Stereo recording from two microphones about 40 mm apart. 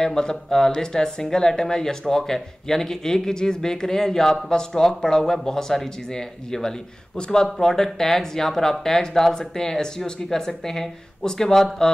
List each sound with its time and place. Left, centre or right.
0.0 s speech: centre
7.6 s speech: centre